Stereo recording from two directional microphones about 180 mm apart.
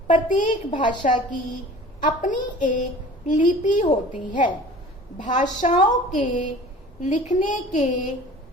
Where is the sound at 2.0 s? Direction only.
45° left (ahead or behind).